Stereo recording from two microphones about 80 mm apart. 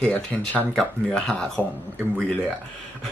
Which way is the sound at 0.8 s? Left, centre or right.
Centre.